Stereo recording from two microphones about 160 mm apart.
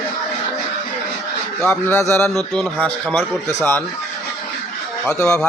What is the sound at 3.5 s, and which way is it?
Speech, 15° left (ahead or behind).